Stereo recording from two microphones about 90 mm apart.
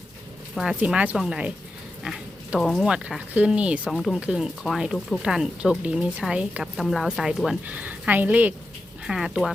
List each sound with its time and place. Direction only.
0.5 s speech: centre (ahead or behind)
2.0 s pig: 5° right (ahead or behind)
2.6 s speech: 5° right (ahead or behind)
3.9 s speech: centre (ahead or behind)
6.6 s speech: centre (ahead or behind)
7.6 s speech: 15° right (ahead or behind)
9.0 s speech: 5° right (ahead or behind)